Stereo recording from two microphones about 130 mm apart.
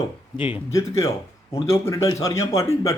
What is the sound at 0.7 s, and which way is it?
A man's voice, 25° left (ahead or behind).